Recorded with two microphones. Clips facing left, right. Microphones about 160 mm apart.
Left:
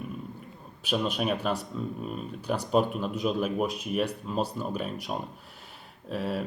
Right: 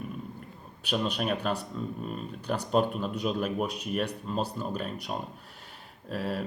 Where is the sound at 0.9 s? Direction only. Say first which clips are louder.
Left 1 dB; 5° left (ahead or behind).